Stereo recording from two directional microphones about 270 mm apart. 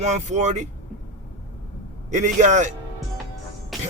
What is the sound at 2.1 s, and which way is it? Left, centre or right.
Speech, right.